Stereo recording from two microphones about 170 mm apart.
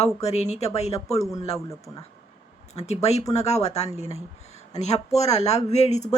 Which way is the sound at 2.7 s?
40° left (ahead or behind).